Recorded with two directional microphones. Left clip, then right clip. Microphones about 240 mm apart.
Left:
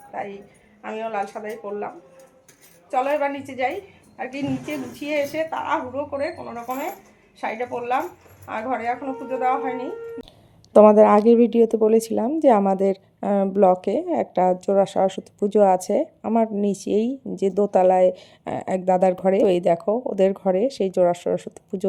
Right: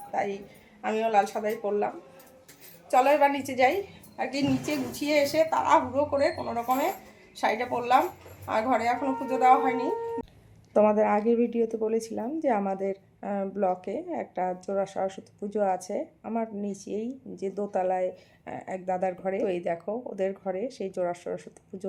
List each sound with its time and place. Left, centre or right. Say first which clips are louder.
0.1 s a woman's voice: right 2 dB; centre
2.9 s a woman's voice: right 1 dB; centre
10.7 s speech: left 10 dB; left